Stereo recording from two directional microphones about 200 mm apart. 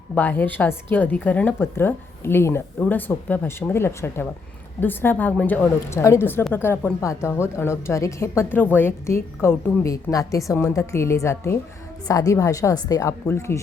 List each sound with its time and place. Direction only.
0.1 s a woman's voice: 10° left (ahead or behind)